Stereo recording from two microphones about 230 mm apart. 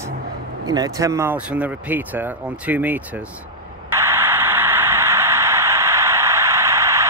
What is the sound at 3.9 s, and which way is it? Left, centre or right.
Radio, centre.